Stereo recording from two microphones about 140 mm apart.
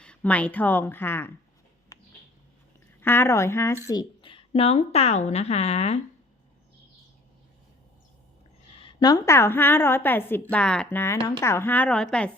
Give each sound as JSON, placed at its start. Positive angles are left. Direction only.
{"t": 0.0, "sound": "a woman's voice", "side_deg": 10}
{"t": 1.9, "sound": "a sound", "side_deg": 25}
{"t": 3.0, "sound": "speech", "side_deg": 15}
{"t": 3.8, "sound": "a woman's voice", "side_deg": 30}
{"t": 8.8, "sound": "a woman's voice", "side_deg": 35}